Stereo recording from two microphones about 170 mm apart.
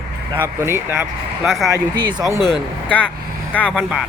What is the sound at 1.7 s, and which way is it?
Speech, 25° right (ahead or behind).